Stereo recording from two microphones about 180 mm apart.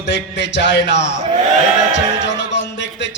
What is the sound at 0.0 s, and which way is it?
Heart sounds, 80° left.